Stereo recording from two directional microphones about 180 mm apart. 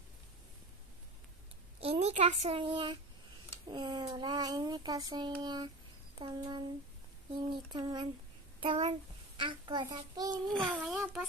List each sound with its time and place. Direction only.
1.8 s speech: 35° right (ahead or behind)
8.6 s a child's voice: 35° right (ahead or behind)
10.7 s a child's voice: 5° right (ahead or behind)